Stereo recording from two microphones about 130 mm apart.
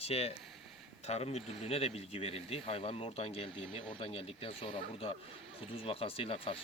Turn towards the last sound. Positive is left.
turn(degrees=45)  # may be behind; listen again after turning